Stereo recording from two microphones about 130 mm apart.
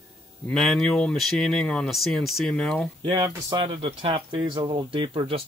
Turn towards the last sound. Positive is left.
turn(degrees=-45)  # may be behind; listen again after turning